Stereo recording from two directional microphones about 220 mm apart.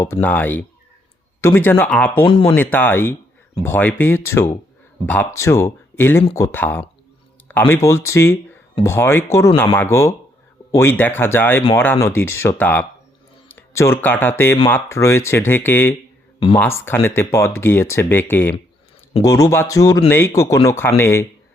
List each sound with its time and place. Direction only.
0.0 s speech: 10° left (ahead or behind)
2.2 s speech: 20° left (ahead or behind)
2.6 s speech: 10° left (ahead or behind)